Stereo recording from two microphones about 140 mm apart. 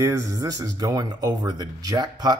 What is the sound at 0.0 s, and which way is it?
Speech, 25° right (ahead or behind).